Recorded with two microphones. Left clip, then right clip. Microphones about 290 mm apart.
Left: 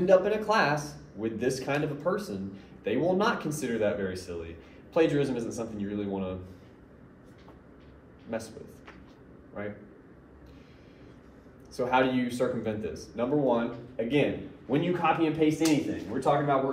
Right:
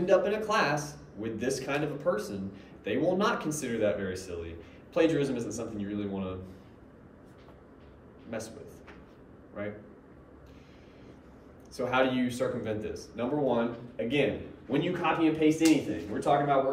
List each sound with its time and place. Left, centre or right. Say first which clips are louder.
0.0 s a man's voice: left 3 dB; centre
8.3 s a man's voice: left 3 dB; centre
11.7 s a man's voice: left 2 dB; centre